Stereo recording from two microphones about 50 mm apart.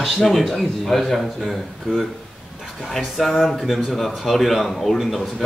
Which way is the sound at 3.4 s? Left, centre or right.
Centre.